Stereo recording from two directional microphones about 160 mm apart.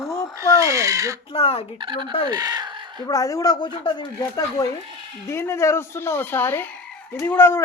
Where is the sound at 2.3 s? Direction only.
25° right (ahead or behind).